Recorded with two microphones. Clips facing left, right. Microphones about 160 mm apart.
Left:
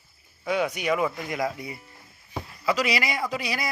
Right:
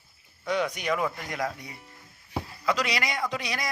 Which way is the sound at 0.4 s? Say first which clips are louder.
Left 2 dB; 5° left (ahead or behind).